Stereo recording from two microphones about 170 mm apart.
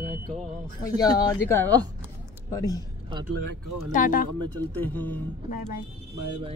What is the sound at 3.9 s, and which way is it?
Speech, 55° left (ahead or behind).